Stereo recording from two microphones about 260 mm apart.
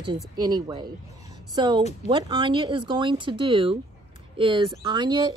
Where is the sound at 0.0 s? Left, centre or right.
Centre.